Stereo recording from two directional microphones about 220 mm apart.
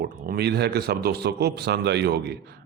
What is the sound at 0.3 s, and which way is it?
Speech, 45° right (ahead or behind).